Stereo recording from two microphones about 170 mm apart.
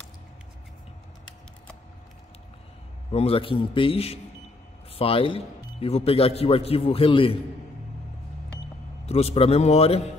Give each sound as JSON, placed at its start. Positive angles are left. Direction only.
{"t": 3.1, "sound": "speech", "side_deg": 35}
{"t": 9.0, "sound": "speech", "side_deg": 40}